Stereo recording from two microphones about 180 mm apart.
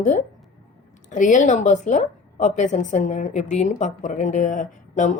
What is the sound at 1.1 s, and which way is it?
A woman's voice, 45° left (ahead or behind).